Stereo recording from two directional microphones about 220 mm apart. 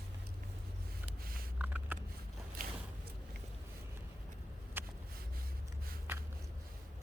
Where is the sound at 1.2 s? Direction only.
40° right (ahead or behind).